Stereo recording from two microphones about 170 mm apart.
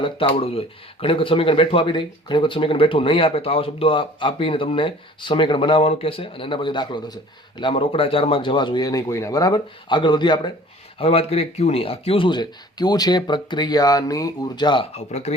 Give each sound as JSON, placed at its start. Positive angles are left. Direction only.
{"t": 0.0, "sound": "speech", "side_deg": 30}